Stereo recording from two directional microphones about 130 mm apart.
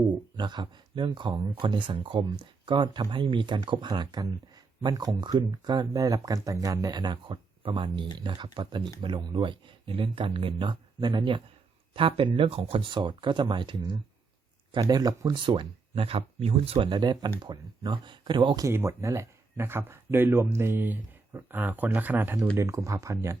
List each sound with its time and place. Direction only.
0.3 s speech: 35° right (ahead or behind)
18.6 s speech: 20° right (ahead or behind)